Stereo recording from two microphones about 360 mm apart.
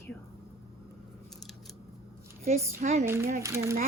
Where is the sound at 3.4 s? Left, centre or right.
Centre.